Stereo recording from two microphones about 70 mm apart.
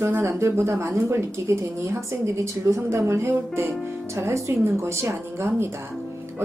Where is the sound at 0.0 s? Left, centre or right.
Right.